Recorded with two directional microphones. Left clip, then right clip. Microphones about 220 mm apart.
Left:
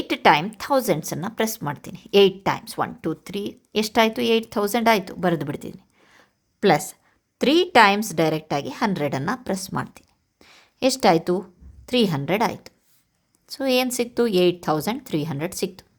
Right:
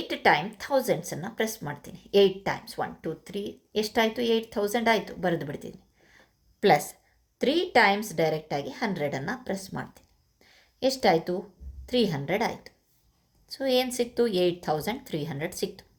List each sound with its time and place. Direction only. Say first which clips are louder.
0.1 s a woman's voice: left 6 dB; 45° left (ahead or behind)